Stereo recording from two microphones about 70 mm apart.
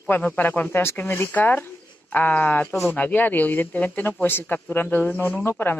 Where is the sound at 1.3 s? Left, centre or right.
Left.